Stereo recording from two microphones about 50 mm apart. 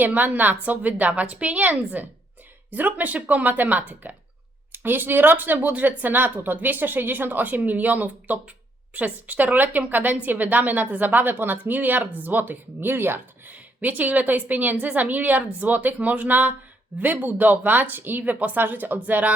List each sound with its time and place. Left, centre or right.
0.0 s a woman's voice: right
18.2 s a woman's voice: right